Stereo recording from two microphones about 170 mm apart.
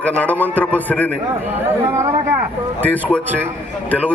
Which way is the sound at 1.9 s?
15° right (ahead or behind).